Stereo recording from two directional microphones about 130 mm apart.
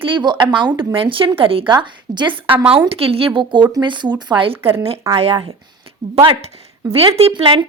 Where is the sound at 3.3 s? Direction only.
35° right (ahead or behind).